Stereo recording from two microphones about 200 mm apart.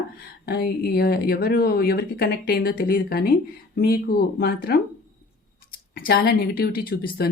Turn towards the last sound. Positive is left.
turn(degrees=50)  # may be behind; listen again after turning